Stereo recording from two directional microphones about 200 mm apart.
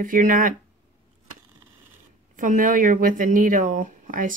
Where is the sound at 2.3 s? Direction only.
40° right (ahead or behind).